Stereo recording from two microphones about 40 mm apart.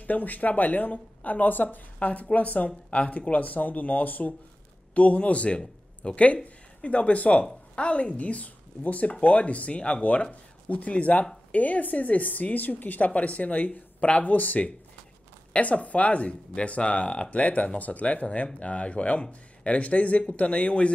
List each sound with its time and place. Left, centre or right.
0.0 s speech: left
2.0 s a woman's voice: left
4.9 s a woman's voice: left